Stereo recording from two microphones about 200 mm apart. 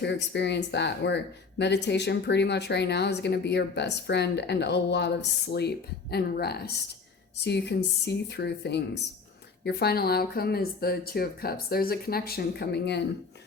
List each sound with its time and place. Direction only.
0.0 s speech: 60° left (ahead or behind)